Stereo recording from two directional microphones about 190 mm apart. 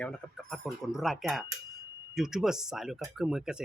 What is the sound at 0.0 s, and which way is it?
Speech, 5° left (ahead or behind).